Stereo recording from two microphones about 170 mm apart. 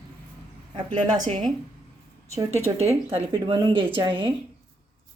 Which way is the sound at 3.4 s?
30° right (ahead or behind).